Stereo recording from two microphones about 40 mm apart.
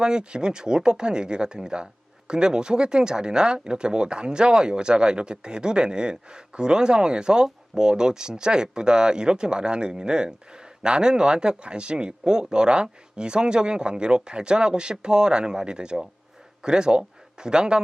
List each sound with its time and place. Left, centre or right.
0.0 s speech: right